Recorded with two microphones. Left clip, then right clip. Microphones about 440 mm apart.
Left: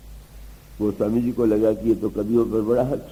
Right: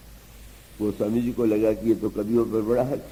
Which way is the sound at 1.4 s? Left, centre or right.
Left.